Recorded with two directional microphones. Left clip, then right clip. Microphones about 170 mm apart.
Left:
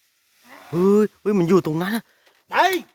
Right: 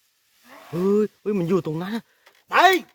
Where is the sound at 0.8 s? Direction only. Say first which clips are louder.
Left 4 dB; 35° left (ahead or behind).